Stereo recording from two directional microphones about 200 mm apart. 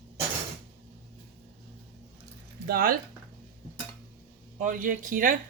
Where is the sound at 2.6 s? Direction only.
50° right (ahead or behind).